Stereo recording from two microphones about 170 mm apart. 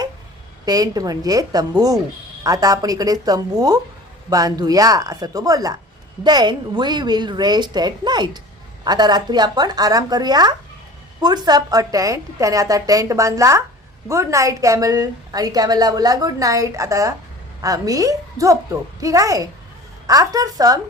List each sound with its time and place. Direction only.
0.6 s a woman's voice: 20° right (ahead or behind)